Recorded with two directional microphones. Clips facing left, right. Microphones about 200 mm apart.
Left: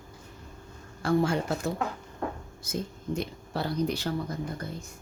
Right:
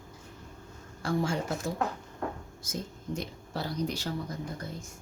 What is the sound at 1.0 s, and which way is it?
Speech, 60° left (ahead or behind).